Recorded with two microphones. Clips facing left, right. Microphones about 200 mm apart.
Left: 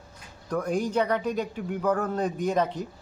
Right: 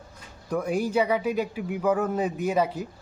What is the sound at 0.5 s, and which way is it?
Speech, 10° right (ahead or behind).